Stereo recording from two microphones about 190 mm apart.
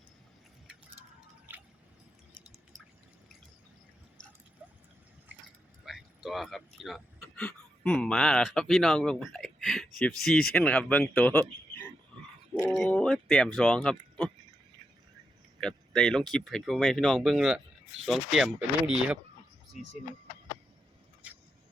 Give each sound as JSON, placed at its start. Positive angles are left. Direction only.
{"t": 5.8, "sound": "speech", "side_deg": 0}
{"t": 12.5, "sound": "a sound", "side_deg": 5}
{"t": 13.6, "sound": "speech", "side_deg": 5}
{"t": 15.6, "sound": "speech", "side_deg": 5}